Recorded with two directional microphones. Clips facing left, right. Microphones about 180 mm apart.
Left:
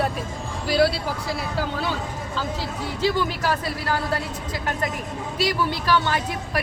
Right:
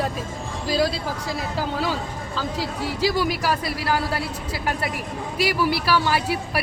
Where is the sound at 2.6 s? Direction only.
10° right (ahead or behind).